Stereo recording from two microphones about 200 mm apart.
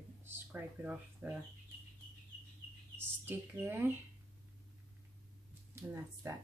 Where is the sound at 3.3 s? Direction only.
10° right (ahead or behind).